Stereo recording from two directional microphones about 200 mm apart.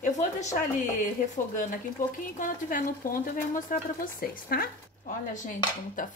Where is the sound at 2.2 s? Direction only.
40° left (ahead or behind).